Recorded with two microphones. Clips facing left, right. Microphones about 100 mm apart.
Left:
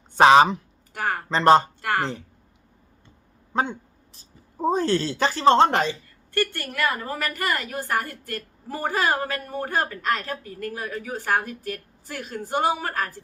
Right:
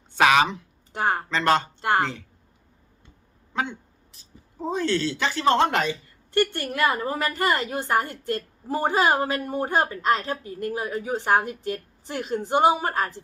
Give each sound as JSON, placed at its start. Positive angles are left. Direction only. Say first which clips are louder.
{"t": 0.1, "sound": "speech", "louder": "left 5 dB", "side_deg": 30}
{"t": 0.9, "sound": "a woman's voice", "louder": "right 3 dB", "side_deg": -25}
{"t": 1.3, "sound": "speech", "louder": "left 8 dB", "side_deg": 35}
{"t": 1.8, "sound": "a woman's voice", "louder": "right 3 dB", "side_deg": -25}
{"t": 3.5, "sound": "speech", "louder": "left 3 dB", "side_deg": 40}
{"t": 5.9, "sound": "a woman's voice", "louder": "right 3 dB", "side_deg": -20}